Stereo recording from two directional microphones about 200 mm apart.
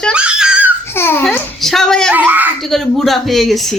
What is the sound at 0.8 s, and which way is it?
A child's voice, 10° left (ahead or behind).